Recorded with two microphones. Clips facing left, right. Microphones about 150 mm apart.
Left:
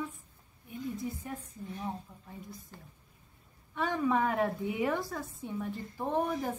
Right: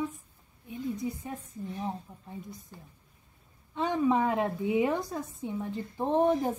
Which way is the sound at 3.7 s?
20° right (ahead or behind).